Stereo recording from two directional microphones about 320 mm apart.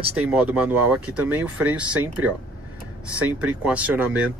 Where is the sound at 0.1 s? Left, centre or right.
Centre.